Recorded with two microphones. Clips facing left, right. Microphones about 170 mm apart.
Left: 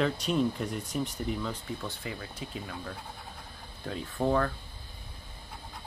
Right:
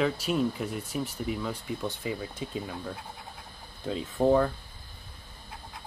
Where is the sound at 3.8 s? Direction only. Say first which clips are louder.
Right 5 dB; 20° right (ahead or behind).